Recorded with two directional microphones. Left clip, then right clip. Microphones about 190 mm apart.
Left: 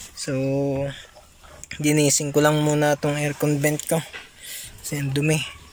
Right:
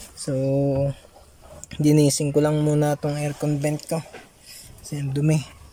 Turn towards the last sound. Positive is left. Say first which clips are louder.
# left 2 dB
turn(degrees=-20)  # may be behind; listen again after turning